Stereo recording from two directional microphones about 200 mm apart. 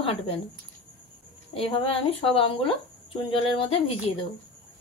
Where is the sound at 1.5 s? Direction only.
25° left (ahead or behind).